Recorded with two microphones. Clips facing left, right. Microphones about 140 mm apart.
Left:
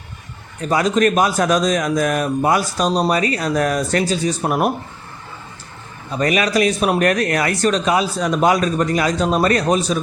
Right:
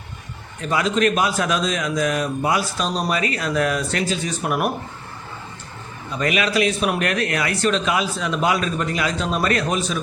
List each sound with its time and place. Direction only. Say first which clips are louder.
0.6 s speech: left 3 dB; 40° left (ahead or behind)
6.1 s speech: left 3 dB; 40° left (ahead or behind)